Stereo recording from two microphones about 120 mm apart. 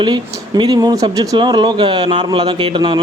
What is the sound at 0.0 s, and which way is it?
Speech, 40° right (ahead or behind).